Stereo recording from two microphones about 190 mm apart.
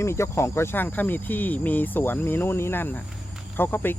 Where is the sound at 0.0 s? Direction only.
15° left (ahead or behind).